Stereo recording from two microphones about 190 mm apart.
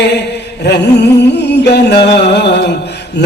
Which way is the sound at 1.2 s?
65° left (ahead or behind).